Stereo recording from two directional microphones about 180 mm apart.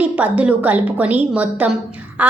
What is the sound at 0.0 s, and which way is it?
A woman's voice, 5° right (ahead or behind).